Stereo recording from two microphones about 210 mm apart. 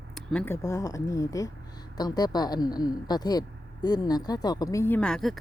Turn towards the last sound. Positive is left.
turn(degrees=0)  # may be behind; listen again after turning